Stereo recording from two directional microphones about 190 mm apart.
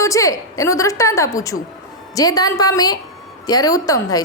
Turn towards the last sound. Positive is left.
turn(degrees=20)  # may be behind; listen again after turning